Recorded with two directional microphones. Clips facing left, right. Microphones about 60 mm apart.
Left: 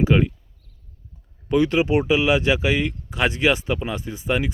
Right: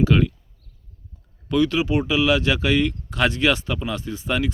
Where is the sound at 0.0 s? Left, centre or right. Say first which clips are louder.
Even; left.